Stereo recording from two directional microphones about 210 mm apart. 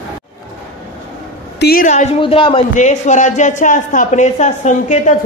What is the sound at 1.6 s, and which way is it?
A woman's voice, 45° left (ahead or behind).